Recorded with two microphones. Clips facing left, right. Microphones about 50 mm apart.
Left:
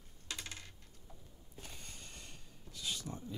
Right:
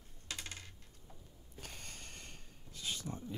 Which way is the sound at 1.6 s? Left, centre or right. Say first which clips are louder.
Right 2 dB; right.